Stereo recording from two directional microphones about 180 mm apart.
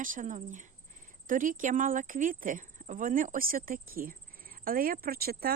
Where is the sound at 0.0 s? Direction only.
45° right (ahead or behind).